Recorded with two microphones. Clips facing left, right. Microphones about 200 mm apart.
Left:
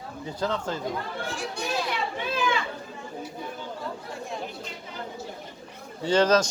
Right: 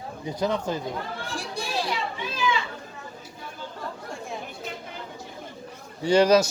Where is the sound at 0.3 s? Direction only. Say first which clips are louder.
Right 3 dB; 15° right (ahead or behind).